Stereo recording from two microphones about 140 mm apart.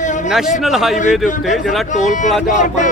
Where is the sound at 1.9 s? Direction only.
60° left (ahead or behind).